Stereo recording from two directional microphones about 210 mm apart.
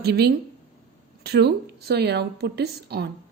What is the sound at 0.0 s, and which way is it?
A woman's voice, 50° right (ahead or behind).